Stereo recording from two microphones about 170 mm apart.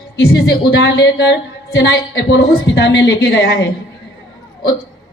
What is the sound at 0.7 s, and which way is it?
A woman's voice, 85° left.